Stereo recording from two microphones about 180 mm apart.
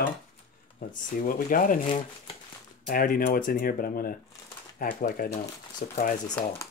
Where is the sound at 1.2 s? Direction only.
50° left (ahead or behind).